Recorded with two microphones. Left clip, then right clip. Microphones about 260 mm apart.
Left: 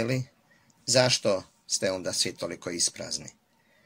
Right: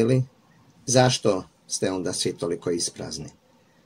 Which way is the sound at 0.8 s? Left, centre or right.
Left.